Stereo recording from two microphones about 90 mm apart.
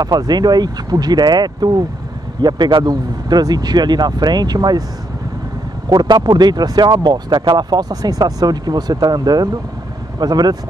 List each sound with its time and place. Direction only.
0.0 s speech: 45° right (ahead or behind)
5.9 s speech: 50° right (ahead or behind)